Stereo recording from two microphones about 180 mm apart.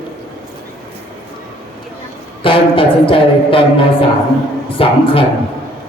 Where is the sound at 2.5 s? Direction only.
30° left (ahead or behind).